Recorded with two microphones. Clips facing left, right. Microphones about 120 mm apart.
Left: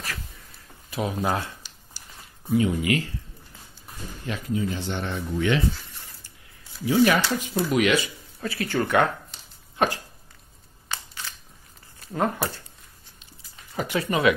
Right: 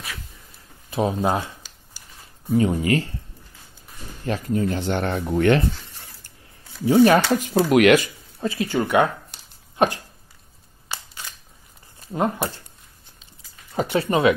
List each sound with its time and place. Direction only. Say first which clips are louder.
0.8 s speech: right 5 dB; 25° right (ahead or behind)
2.5 s speech: right 3 dB; 40° right (ahead or behind)
4.3 s speech: right 5 dB; 50° right (ahead or behind)
6.9 s speech: right 5 dB; 50° right (ahead or behind)
7.6 s speech: right 7 dB; 60° right (ahead or behind)
8.4 s speech: right 3 dB; 20° right (ahead or behind)
12.1 s speech: right 2 dB; 20° right (ahead or behind)
13.7 s speech: right 4 dB; 30° right (ahead or behind)